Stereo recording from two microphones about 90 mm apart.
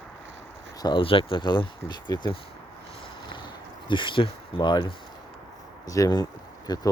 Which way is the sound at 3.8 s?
65° left (ahead or behind).